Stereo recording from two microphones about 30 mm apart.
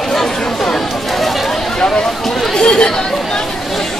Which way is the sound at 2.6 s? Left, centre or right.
Left.